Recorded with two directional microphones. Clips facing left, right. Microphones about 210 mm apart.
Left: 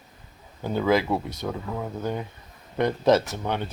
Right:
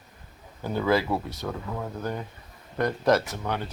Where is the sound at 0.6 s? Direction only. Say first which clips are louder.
Left 2 dB; 15° left (ahead or behind).